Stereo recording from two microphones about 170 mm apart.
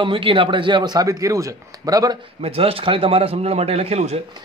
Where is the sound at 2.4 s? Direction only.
35° right (ahead or behind).